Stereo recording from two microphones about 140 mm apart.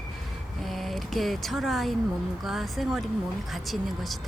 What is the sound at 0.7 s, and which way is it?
Speech, centre (ahead or behind).